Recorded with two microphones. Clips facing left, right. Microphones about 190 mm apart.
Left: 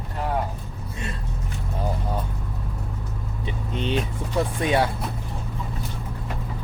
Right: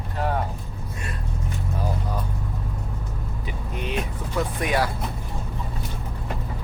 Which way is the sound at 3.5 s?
30° left (ahead or behind).